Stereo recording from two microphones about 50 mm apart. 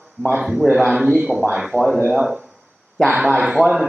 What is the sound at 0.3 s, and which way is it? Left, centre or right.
Speech, centre.